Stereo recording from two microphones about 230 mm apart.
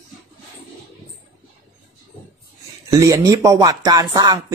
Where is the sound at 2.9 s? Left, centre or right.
Centre.